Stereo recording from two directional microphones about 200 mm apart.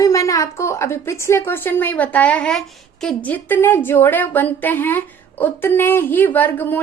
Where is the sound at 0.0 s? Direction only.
15° left (ahead or behind).